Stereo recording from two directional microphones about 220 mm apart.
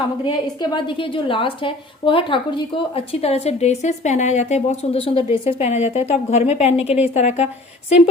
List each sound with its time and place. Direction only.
0.3 s a woman's voice: 20° left (ahead or behind)